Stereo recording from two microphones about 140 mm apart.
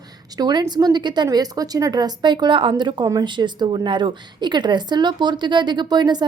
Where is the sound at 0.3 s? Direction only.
30° right (ahead or behind).